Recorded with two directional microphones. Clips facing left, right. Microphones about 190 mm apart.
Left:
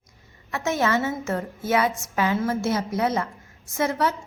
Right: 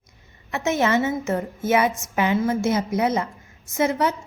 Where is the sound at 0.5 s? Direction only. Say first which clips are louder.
Right 2 dB; 20° right (ahead or behind).